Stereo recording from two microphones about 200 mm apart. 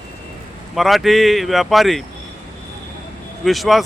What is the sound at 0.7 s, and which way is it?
Speech, centre (ahead or behind).